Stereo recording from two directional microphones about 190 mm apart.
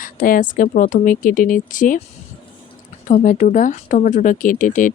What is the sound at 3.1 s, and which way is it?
Speech, 45° left (ahead or behind).